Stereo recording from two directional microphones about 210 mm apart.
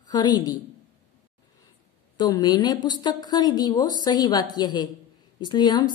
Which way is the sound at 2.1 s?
20° left (ahead or behind).